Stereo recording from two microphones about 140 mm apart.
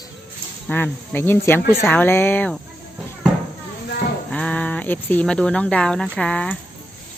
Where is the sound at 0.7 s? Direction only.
10° left (ahead or behind).